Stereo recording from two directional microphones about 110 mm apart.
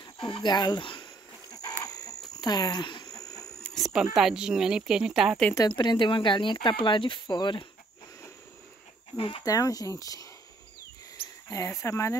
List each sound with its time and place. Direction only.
0.2 s speech: 45° left (ahead or behind)
2.0 s a sound: 40° left (ahead or behind)
3.6 s a sound: centre (ahead or behind)
4.1 s speech: 5° right (ahead or behind)
5.7 s speech: 45° left (ahead or behind)
9.1 s speech: 50° left (ahead or behind)
9.4 s speech: 30° left (ahead or behind)
11.4 s speech: 30° left (ahead or behind)